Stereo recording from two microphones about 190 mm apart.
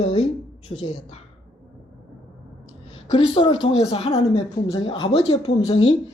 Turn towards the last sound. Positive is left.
turn(degrees=25)  # may be behind; listen again after turning